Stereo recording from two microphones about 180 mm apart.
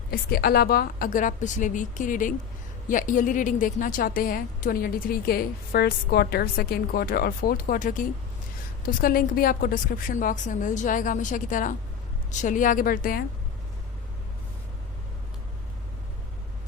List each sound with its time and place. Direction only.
0.1 s a woman's voice: 55° left (ahead or behind)